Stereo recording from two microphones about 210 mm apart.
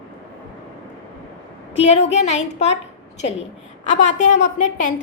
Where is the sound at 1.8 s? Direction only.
30° left (ahead or behind).